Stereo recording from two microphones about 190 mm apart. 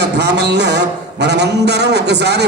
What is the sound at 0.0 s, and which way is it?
A man's voice, 65° right (ahead or behind).